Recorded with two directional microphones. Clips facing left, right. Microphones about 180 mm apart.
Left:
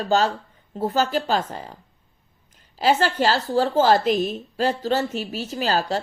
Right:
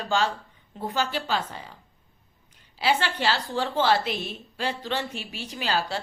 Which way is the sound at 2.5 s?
40° left (ahead or behind).